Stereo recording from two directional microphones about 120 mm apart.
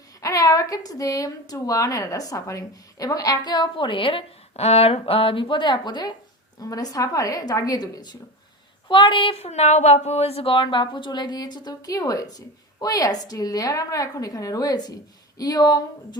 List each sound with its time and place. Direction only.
0.2 s a woman's voice: 30° left (ahead or behind)
8.9 s a woman's voice: 45° left (ahead or behind)
9.5 s a woman's voice: 65° left (ahead or behind); by 15.8 s 30° left (ahead or behind)